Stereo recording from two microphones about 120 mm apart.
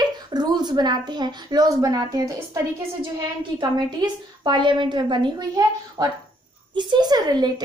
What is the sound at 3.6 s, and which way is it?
A woman's voice, 35° right (ahead or behind).